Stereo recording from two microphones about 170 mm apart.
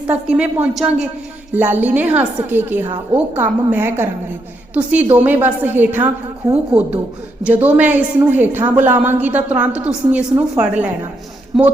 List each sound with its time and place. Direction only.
0.1 s a woman's voice: 5° right (ahead or behind)
7.4 s a woman's voice: 10° right (ahead or behind)